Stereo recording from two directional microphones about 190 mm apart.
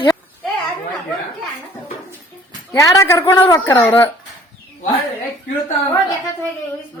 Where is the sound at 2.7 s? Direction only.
20° left (ahead or behind).